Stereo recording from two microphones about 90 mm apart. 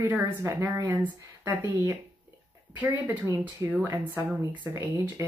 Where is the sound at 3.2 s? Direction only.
35° right (ahead or behind).